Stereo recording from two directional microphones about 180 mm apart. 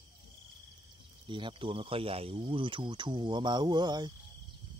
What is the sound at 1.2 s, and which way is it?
Speech, 25° right (ahead or behind).